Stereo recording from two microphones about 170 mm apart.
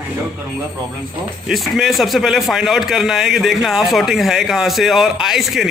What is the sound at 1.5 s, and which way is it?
A man's voice, centre (ahead or behind).